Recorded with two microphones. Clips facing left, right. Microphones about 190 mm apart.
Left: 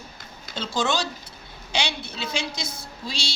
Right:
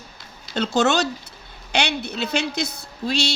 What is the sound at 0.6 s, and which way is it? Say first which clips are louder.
A woman's voice: right 6 dB; 65° right (ahead or behind).